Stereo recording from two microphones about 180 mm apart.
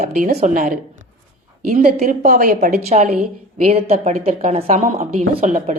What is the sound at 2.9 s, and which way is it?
A woman's voice, 35° right (ahead or behind).